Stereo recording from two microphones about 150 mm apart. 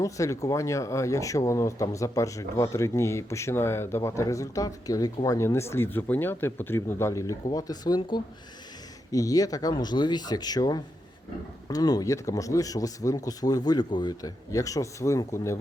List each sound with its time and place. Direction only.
0.0 s speech: 20° left (ahead or behind)